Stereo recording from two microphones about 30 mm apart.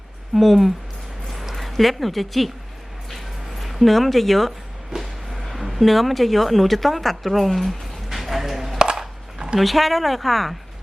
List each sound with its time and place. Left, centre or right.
0.3 s speech: centre
1.3 s a sound: centre
3.6 s speech: centre
4.9 s music: right
5.5 s speech: centre